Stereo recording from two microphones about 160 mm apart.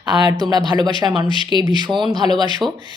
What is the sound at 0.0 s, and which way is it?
A woman's voice, 25° right (ahead or behind).